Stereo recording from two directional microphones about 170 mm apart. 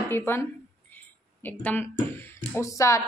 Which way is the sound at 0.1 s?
15° left (ahead or behind).